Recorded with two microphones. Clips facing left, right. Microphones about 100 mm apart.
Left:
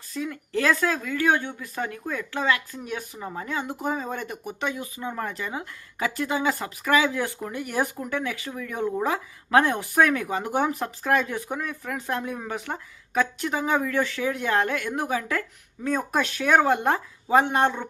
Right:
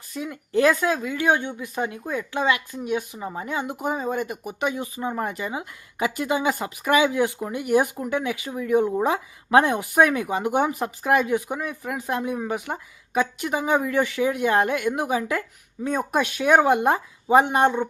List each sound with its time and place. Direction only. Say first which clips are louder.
0.1 s a woman's voice: right 2 dB; 20° right (ahead or behind)
4.7 s speech: right 4 dB; 25° right (ahead or behind)
5.1 s a woman's voice: right 3 dB; 15° right (ahead or behind)